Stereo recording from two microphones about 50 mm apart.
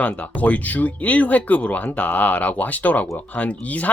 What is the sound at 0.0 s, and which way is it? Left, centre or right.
Speech, left.